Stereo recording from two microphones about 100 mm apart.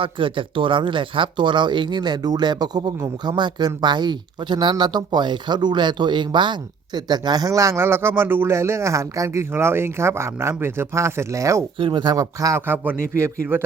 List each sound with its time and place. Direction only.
0.0 s speech: 60° right (ahead or behind); by 11.6 s 30° right (ahead or behind)
11.8 s speech: 55° right (ahead or behind)
12.2 s speech: 35° right (ahead or behind)
12.6 s speech: 20° right (ahead or behind)